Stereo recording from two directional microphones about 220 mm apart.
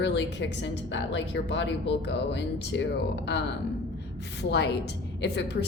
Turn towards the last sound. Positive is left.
turn(degrees=50)  # may be behind; listen again after turning